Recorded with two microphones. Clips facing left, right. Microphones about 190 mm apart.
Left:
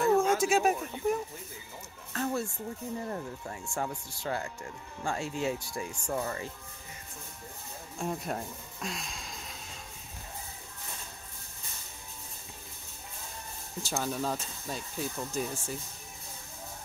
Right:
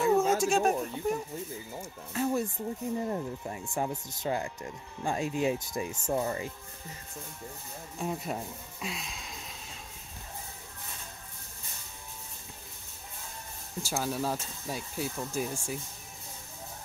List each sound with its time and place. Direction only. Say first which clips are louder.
0.0 s a sound: even; 5° right (ahead or behind)
0.4 s speech: even; 5° left (ahead or behind)
2.1 s music: right 3 dB; 10° right (ahead or behind)
3.0 s speech: right 4 dB; 20° right (ahead or behind)
8.0 s speech: even; centre (ahead or behind)
13.8 s speech: right 1 dB; 5° right (ahead or behind)